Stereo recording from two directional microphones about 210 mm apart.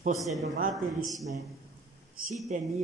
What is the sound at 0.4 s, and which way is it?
Speech, 40° right (ahead or behind).